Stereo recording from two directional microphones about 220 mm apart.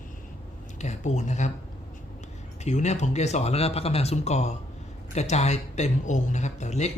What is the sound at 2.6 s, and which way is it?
Speech, 30° left (ahead or behind).